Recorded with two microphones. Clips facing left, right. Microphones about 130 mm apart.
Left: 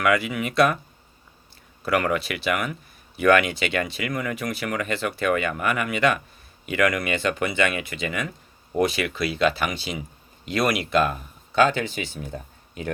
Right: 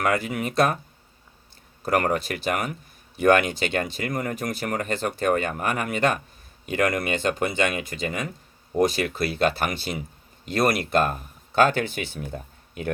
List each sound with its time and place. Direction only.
0.0 s speech: 45° right (ahead or behind)
1.8 s speech: 45° right (ahead or behind)